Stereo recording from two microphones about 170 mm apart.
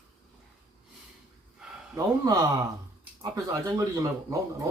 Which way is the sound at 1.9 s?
20° right (ahead or behind).